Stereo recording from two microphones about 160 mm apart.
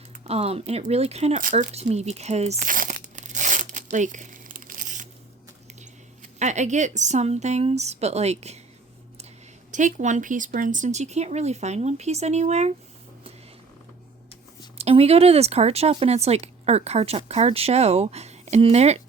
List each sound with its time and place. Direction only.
0.3 s speech: 40° right (ahead or behind)
1.4 s speech: 55° right (ahead or behind)
1.7 s crumpling: 40° right (ahead or behind)
6.4 s speech: 45° right (ahead or behind)
9.7 s speech: 50° right (ahead or behind)
14.8 s speech: 40° right (ahead or behind)